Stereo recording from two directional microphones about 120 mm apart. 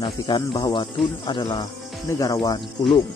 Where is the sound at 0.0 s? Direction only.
35° left (ahead or behind).